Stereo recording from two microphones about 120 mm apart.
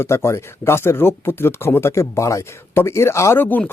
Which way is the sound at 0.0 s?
20° left (ahead or behind).